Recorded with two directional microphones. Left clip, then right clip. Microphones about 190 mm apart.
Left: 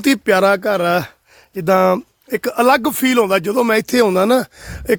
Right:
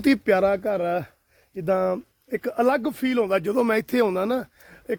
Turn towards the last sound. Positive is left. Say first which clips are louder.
# left 12 dB
turn(degrees=50)  # may be behind; listen again after turning